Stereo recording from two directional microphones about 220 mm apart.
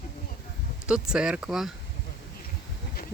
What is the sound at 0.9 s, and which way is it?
Speech, 5° right (ahead or behind).